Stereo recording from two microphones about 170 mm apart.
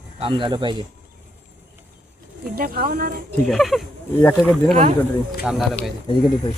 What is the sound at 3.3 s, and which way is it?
Speech, 5° left (ahead or behind).